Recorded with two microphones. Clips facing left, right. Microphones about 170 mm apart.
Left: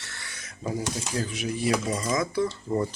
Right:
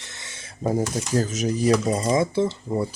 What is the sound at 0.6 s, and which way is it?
Speech, 45° right (ahead or behind).